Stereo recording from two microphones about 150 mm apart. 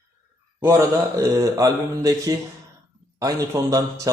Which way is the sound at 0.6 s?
20° right (ahead or behind).